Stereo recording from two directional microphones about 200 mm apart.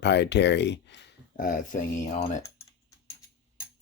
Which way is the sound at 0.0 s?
60° left (ahead or behind).